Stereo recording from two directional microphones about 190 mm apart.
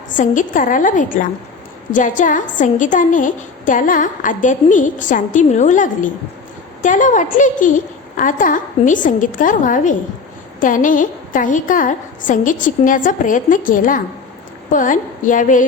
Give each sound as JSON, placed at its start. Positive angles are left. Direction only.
{"t": 0.1, "sound": "a woman's voice", "side_deg": 45}